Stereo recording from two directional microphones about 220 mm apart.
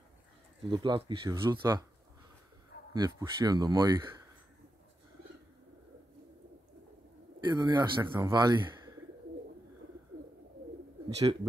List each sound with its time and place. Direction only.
0.7 s speech: 20° right (ahead or behind)
2.9 s speech: 15° right (ahead or behind)
7.3 s a man's voice: 15° right (ahead or behind)